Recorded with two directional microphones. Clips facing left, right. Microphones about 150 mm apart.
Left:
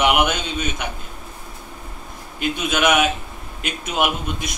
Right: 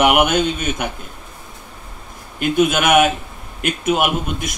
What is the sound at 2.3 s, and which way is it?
A man's voice, 55° right (ahead or behind).